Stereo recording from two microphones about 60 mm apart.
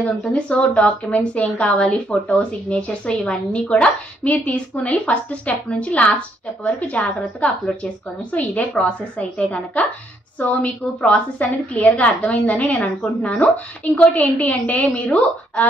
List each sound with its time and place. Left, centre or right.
0.0 s a woman's voice: centre